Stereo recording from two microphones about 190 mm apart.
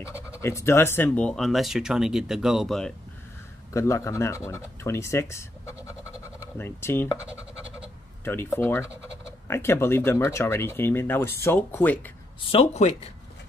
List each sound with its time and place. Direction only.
0.4 s speech: 15° left (ahead or behind)
3.7 s speech: 15° left (ahead or behind)
7.2 s scratch: 5° right (ahead or behind)
8.2 s speech: 10° left (ahead or behind)
12.4 s a man's voice: 30° left (ahead or behind)